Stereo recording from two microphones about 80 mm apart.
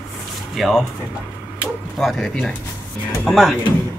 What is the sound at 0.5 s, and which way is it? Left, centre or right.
Speech, centre.